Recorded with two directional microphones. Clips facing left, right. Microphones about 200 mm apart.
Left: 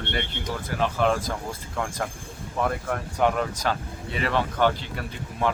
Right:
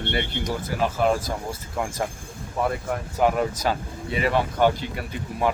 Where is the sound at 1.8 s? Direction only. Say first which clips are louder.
Right 2 dB; 10° right (ahead or behind).